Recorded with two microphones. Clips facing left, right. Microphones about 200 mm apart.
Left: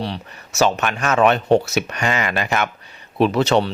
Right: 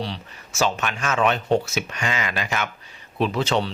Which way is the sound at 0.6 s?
60° left (ahead or behind).